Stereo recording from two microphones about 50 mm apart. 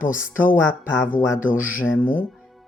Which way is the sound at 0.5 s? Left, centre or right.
Left.